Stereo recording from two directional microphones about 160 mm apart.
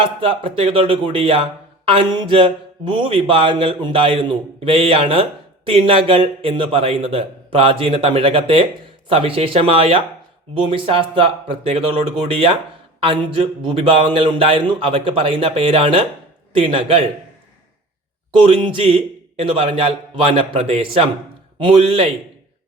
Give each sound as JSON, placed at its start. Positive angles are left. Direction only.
{"t": 0.0, "sound": "speech", "side_deg": -35}
{"t": 18.3, "sound": "speech", "side_deg": -35}